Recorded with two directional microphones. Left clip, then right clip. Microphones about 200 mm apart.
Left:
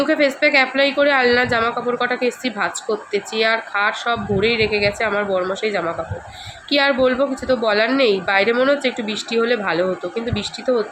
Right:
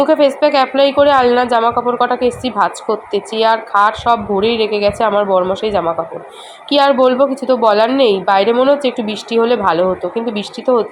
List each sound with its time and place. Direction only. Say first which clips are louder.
0.1 s a woman's voice: right 5 dB; 15° right (ahead or behind)